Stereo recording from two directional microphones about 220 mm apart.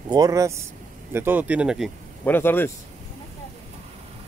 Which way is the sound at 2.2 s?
10° left (ahead or behind).